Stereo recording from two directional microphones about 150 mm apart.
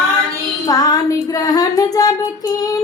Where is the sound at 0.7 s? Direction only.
25° left (ahead or behind).